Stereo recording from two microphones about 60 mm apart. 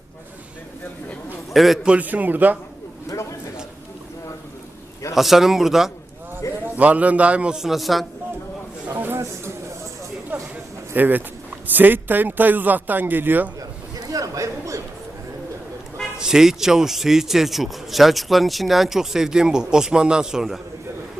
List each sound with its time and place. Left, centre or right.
1.5 s a man's voice: centre
1.8 s a man's voice: centre
2.0 s a man's voice: right
5.1 s a man's voice: centre
6.4 s a sound: left
6.7 s a man's voice: right
7.6 s a man's voice: centre
9.0 s a sound: right
10.3 s a sound: right
10.9 s a man's voice: right
13.6 s a sound: right
16.1 s a man's voice: centre